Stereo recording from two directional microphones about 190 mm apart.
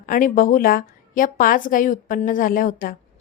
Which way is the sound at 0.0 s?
45° left (ahead or behind).